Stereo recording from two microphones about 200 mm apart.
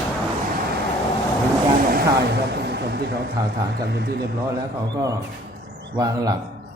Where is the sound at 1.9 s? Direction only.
50° right (ahead or behind).